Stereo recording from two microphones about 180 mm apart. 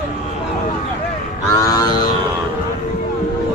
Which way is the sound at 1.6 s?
20° left (ahead or behind).